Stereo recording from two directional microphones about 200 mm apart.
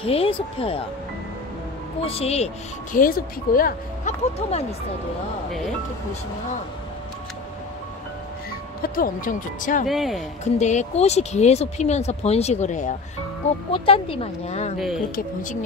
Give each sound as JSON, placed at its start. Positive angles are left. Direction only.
{"t": 0.0, "sound": "speech", "side_deg": 30}
{"t": 2.0, "sound": "speech", "side_deg": 30}
{"t": 4.5, "sound": "speech", "side_deg": 30}
{"t": 8.8, "sound": "speech", "side_deg": 45}
{"t": 9.8, "sound": "speech", "side_deg": 0}
{"t": 10.4, "sound": "speech", "side_deg": 35}
{"t": 13.7, "sound": "speech", "side_deg": 25}